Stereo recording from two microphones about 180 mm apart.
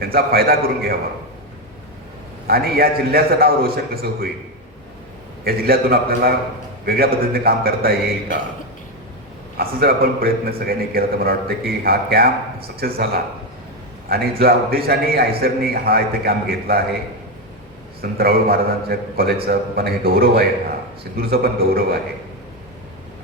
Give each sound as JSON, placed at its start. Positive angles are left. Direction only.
{"t": 0.0, "sound": "a man's voice", "side_deg": -55}
{"t": 2.5, "sound": "a man's voice", "side_deg": -55}
{"t": 5.5, "sound": "a man's voice", "side_deg": -55}
{"t": 9.6, "sound": "a man's voice", "side_deg": -55}
{"t": 14.1, "sound": "a man's voice", "side_deg": -55}
{"t": 18.0, "sound": "a man's voice", "side_deg": -55}